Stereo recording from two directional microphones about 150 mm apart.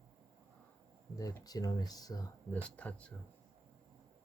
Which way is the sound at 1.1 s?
25° left (ahead or behind).